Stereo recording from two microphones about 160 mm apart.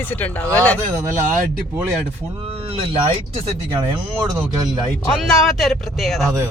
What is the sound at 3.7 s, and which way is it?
Speech, 20° right (ahead or behind).